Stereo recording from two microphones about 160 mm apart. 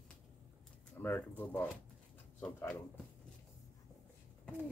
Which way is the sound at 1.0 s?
10° left (ahead or behind).